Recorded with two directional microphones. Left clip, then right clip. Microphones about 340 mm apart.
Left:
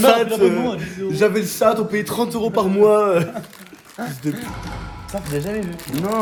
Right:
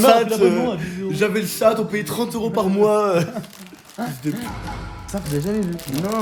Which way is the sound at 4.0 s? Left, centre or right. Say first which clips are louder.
Right 1 dB; right.